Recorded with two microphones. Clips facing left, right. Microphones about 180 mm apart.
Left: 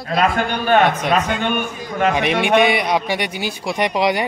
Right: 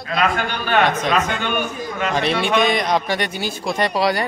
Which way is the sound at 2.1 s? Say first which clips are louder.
Left 1 dB; 15° left (ahead or behind).